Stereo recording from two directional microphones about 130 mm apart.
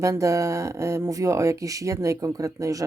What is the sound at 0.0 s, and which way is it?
Speech, 25° right (ahead or behind).